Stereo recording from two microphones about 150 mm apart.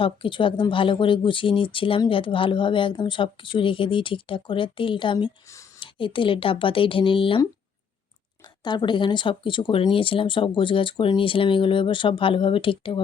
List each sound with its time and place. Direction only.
0.0 s speech: 35° left (ahead or behind)
8.6 s speech: 30° left (ahead or behind)